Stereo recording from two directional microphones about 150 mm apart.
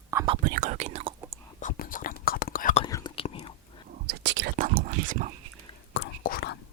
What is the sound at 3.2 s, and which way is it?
Chewing, 40° left (ahead or behind).